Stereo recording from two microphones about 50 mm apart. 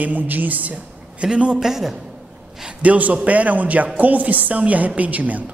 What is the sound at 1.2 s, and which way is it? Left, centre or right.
Speech, centre.